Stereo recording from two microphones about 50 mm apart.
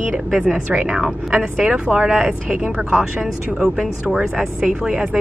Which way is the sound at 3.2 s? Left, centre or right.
Centre.